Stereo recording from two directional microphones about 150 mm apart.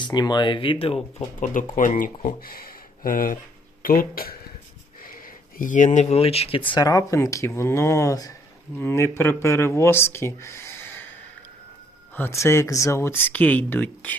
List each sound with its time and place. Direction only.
0.0 s speech: 30° left (ahead or behind)
1.4 s speech: 60° left (ahead or behind)
2.2 s speech: 80° left; by 11.0 s 15° left (ahead or behind)
12.1 s speech: 15° left (ahead or behind)